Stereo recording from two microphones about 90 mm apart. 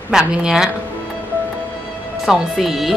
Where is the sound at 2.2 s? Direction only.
5° right (ahead or behind).